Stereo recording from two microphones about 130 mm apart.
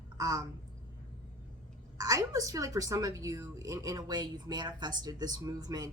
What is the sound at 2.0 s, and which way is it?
A woman's voice, 25° right (ahead or behind).